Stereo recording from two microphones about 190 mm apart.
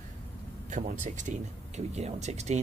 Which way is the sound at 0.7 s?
45° right (ahead or behind).